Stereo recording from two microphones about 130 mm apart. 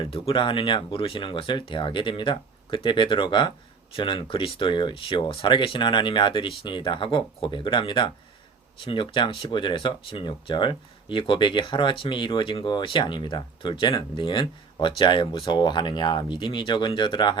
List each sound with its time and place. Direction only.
0.0 s speech: 45° left (ahead or behind)